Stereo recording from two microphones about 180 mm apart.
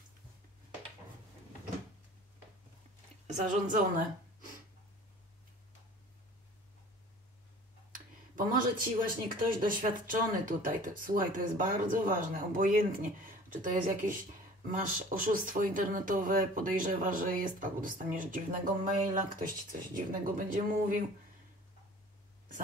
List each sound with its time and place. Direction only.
3.3 s speech: 45° right (ahead or behind)
7.9 s speech: 50° right (ahead or behind)